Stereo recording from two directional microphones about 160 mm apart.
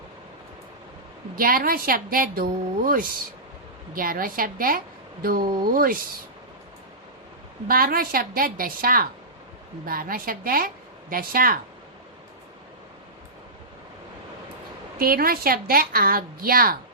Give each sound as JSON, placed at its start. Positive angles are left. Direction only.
{"t": 1.4, "sound": "a woman's voice", "side_deg": -65}
{"t": 7.7, "sound": "a woman's voice", "side_deg": -65}
{"t": 14.9, "sound": "a woman's voice", "side_deg": -65}